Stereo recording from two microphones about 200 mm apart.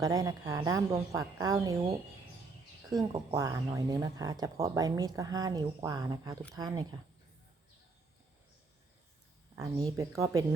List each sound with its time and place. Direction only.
0.0 s speech: 20° right (ahead or behind)
2.9 s speech: 20° right (ahead or behind)
9.6 s speech: 15° right (ahead or behind)